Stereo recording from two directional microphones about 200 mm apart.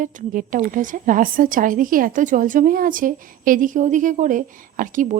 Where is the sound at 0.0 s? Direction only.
40° right (ahead or behind).